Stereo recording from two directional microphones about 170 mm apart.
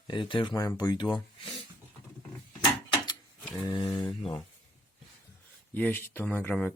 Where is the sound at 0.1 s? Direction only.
30° left (ahead or behind).